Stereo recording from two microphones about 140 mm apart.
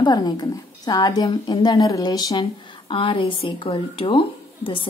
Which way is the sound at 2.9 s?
40° left (ahead or behind).